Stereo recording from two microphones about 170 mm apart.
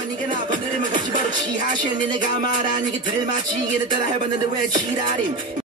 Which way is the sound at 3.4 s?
25° right (ahead or behind).